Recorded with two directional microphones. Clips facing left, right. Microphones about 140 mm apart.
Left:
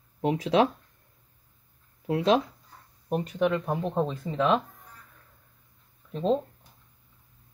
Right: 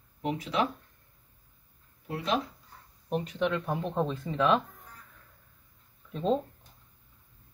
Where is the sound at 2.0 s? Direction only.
90° left.